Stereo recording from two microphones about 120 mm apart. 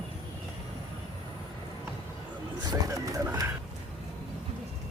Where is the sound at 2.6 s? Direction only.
30° right (ahead or behind).